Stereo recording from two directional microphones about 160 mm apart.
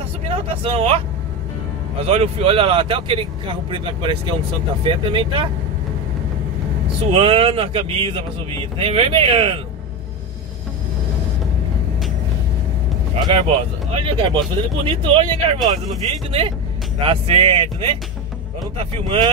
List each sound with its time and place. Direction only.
0.3 s speech: 40° right (ahead or behind)
7.0 s speech: 35° right (ahead or behind)
13.1 s speech: 35° right (ahead or behind)